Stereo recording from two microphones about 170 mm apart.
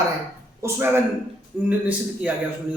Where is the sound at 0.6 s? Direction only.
15° right (ahead or behind).